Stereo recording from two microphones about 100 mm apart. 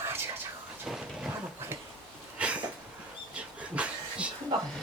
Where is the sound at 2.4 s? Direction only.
15° right (ahead or behind).